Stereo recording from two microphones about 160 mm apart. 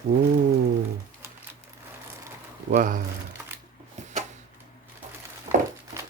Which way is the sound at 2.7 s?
55° right (ahead or behind).